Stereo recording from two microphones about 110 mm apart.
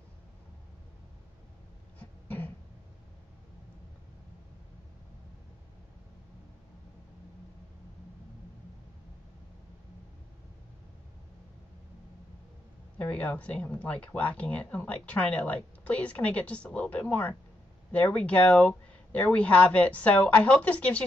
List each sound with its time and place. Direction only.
2.0 s throat clearing: 15° left (ahead or behind)
12.9 s speech: 10° left (ahead or behind)